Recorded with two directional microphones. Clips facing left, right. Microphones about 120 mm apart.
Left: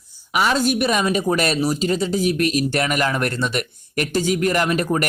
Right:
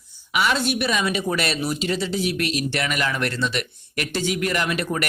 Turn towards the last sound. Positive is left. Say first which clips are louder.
# left 5 dB
turn(degrees=40)  # may be behind; listen again after turning